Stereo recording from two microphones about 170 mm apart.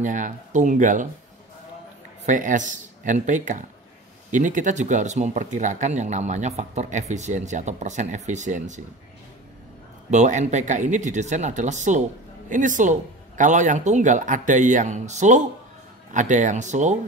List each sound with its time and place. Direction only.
0.0 s speech: 50° right (ahead or behind)
2.2 s speech: 50° right (ahead or behind)
10.1 s speech: 45° right (ahead or behind)